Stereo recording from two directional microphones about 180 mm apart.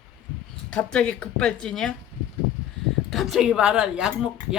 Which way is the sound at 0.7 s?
5° left (ahead or behind).